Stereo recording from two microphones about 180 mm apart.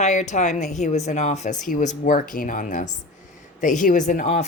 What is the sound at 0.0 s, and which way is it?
Speech, 40° left (ahead or behind).